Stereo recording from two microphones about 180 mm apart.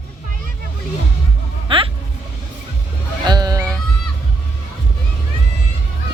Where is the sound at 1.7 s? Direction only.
30° right (ahead or behind).